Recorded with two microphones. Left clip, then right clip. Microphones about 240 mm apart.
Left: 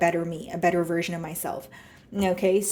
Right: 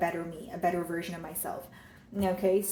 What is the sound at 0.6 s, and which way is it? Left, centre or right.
A woman's voice, left.